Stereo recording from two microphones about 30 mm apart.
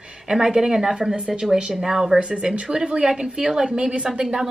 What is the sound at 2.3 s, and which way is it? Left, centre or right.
Speech, right.